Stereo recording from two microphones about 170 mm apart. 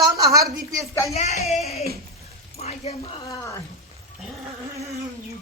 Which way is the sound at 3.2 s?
15° left (ahead or behind).